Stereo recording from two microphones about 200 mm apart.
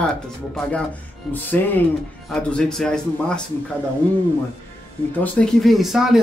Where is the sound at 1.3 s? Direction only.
10° left (ahead or behind).